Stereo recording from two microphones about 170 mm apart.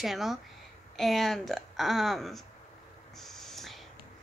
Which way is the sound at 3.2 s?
Centre (ahead or behind).